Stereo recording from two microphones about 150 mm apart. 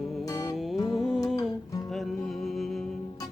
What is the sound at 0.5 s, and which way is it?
Music, centre (ahead or behind).